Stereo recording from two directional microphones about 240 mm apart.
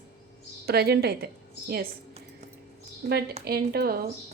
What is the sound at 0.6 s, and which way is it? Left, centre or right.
Speech, right.